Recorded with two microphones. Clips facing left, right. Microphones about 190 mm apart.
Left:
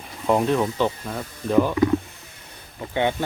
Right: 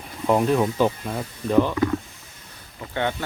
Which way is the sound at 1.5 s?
10° left (ahead or behind).